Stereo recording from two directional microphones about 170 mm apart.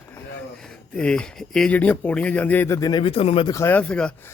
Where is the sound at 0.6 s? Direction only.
5° left (ahead or behind); by 3.5 s 35° left (ahead or behind).